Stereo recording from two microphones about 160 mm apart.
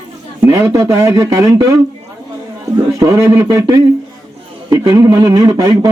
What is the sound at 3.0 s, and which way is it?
A man's voice, 20° right (ahead or behind).